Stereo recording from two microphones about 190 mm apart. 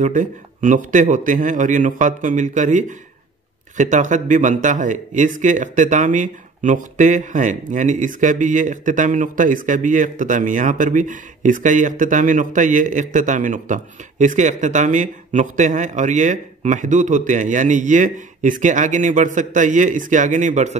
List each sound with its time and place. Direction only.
0.0 s speech: 40° right (ahead or behind)